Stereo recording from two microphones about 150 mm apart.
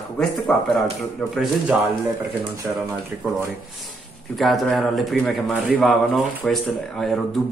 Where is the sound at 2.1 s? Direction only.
15° right (ahead or behind).